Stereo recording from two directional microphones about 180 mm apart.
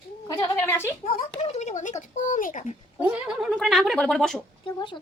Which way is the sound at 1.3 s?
35° left (ahead or behind).